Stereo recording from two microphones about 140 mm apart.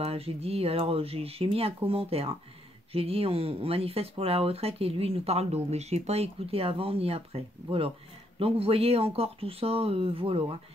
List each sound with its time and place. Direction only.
0.0 s speech: 45° right (ahead or behind)